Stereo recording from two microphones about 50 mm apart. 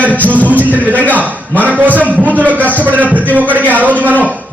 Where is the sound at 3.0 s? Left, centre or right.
Left.